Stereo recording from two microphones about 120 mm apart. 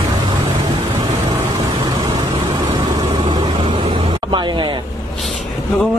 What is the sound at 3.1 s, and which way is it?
Vehicle, 50° right (ahead or behind).